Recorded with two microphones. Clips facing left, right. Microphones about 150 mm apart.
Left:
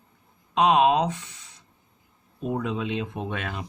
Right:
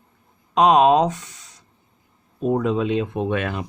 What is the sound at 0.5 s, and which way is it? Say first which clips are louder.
Speech: right 5 dB; 45° right (ahead or behind).